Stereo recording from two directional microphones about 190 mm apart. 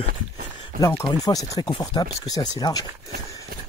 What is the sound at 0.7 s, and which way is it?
Speech, 20° left (ahead or behind).